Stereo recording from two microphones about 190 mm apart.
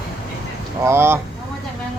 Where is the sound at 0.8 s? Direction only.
10° right (ahead or behind).